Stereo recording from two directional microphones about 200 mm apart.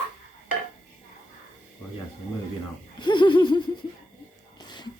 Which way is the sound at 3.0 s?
25° left (ahead or behind).